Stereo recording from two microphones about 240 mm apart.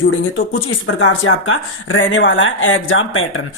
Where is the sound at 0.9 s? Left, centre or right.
Left.